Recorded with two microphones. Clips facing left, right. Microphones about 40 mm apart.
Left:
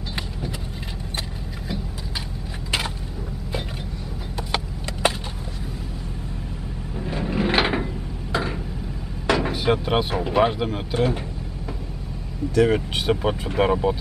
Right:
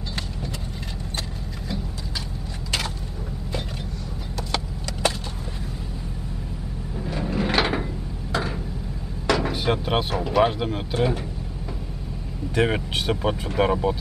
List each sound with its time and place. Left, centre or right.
4.4 s vehicle: centre
7.1 s a sound: centre
9.5 s a sound: centre
10.4 s speech: centre
12.5 s speech: right
12.9 s speech: centre